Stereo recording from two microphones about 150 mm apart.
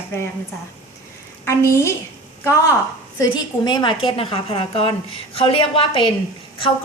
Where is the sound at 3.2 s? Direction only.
30° left (ahead or behind).